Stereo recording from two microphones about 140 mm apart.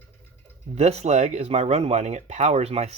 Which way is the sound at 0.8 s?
50° right (ahead or behind).